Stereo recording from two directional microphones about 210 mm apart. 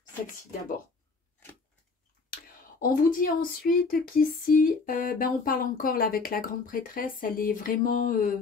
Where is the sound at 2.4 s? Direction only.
40° left (ahead or behind).